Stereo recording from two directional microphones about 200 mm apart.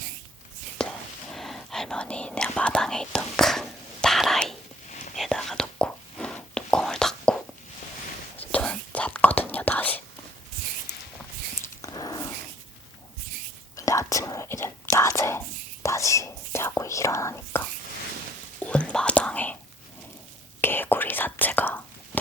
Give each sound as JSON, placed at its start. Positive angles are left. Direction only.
{"t": 0.8, "sound": "whispering", "side_deg": 5}
{"t": 11.6, "sound": "dog", "side_deg": 15}
{"t": 13.7, "sound": "whispering", "side_deg": 15}
{"t": 18.6, "sound": "whispering", "side_deg": 5}
{"t": 20.6, "sound": "whispering", "side_deg": 10}